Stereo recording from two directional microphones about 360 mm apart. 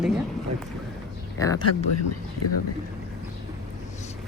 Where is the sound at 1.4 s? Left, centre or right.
Centre.